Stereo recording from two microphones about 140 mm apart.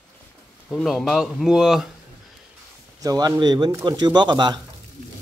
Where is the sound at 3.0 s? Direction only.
25° right (ahead or behind).